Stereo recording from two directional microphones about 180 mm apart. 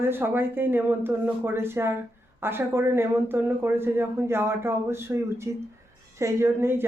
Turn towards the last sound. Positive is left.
turn(degrees=-15)  # may be behind; listen again after turning